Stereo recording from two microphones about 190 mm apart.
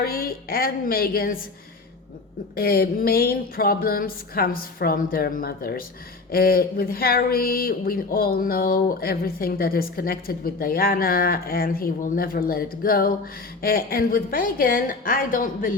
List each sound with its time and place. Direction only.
0.0 s speech: 50° left (ahead or behind)
2.6 s speech: 50° left (ahead or behind)